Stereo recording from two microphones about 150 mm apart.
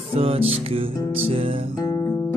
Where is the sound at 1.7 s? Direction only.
25° left (ahead or behind).